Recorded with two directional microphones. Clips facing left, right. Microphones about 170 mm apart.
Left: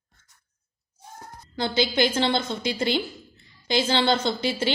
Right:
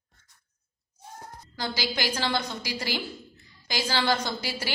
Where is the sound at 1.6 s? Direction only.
25° left (ahead or behind).